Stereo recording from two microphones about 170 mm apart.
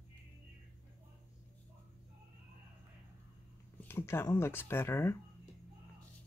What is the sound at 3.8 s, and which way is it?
Speech, 15° left (ahead or behind).